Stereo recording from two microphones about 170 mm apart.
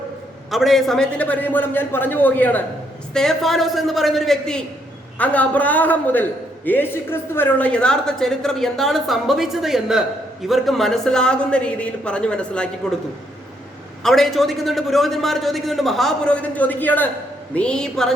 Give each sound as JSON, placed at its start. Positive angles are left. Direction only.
{"t": 0.5, "sound": "a man's voice", "side_deg": 0}
{"t": 14.0, "sound": "a woman's voice", "side_deg": 0}